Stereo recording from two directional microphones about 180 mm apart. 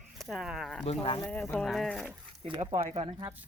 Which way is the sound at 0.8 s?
30° left (ahead or behind).